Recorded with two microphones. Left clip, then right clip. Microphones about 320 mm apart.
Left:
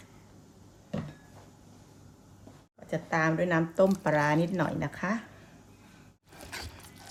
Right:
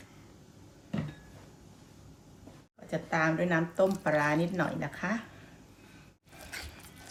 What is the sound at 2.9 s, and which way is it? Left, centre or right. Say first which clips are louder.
Speech: left 1 dB; left.